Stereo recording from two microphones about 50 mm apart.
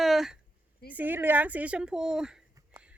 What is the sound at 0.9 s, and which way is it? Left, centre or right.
Speech, right.